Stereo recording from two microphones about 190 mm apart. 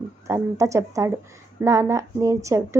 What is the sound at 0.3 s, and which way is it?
A woman's voice, 15° right (ahead or behind).